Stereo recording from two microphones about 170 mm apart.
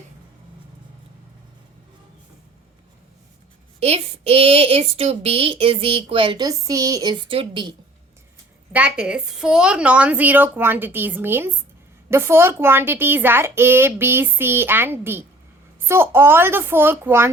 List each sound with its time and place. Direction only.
3.8 s a woman's voice: 35° right (ahead or behind)
8.7 s a woman's voice: 5° right (ahead or behind)